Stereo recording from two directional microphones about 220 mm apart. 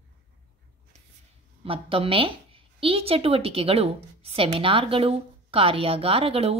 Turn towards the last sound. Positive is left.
turn(degrees=-25)  # may be behind; listen again after turning